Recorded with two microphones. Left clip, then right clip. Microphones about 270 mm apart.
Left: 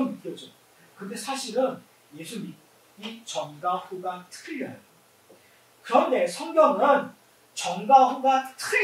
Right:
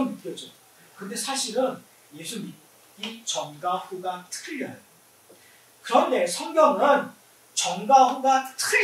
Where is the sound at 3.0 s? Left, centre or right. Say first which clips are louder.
Right 2 dB; centre.